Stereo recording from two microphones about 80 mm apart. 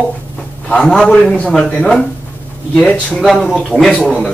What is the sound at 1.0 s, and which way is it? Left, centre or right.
A man's voice, centre.